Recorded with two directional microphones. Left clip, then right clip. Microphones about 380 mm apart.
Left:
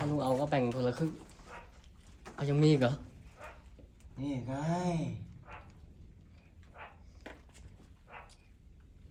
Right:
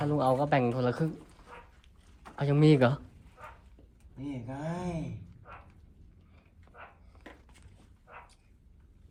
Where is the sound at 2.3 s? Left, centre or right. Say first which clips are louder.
Right 4 dB; centre.